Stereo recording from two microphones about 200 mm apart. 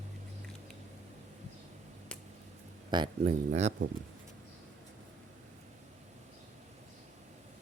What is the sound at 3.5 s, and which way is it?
Speech, 35° right (ahead or behind).